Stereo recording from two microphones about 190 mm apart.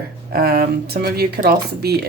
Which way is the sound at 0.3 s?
50° right (ahead or behind).